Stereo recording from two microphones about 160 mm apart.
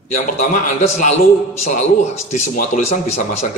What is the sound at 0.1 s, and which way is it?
A man's voice, 50° left (ahead or behind).